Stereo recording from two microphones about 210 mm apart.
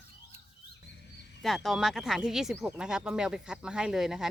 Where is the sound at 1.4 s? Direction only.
Centre (ahead or behind).